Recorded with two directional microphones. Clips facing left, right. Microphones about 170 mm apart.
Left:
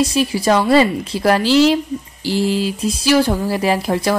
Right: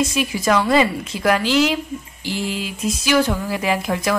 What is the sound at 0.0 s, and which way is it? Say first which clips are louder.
Speech: left 4 dB; 35° left (ahead or behind).